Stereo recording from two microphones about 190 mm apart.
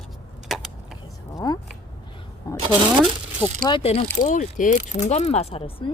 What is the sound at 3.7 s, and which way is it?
Speech, 30° left (ahead or behind).